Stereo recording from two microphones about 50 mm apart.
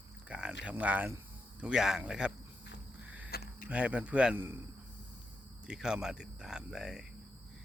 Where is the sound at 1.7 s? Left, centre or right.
Centre.